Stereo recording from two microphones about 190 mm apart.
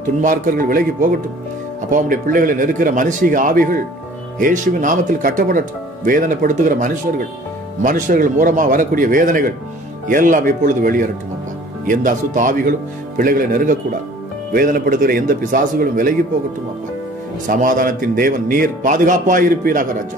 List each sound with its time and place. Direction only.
0.2 s speech: 45° right (ahead or behind)
1.9 s speech: 45° right (ahead or behind)
17.5 s speech: 45° right (ahead or behind)